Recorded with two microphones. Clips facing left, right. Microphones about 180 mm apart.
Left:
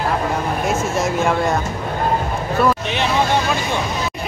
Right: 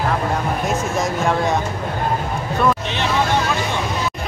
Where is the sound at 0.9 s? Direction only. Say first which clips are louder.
Left 1 dB; centre (ahead or behind).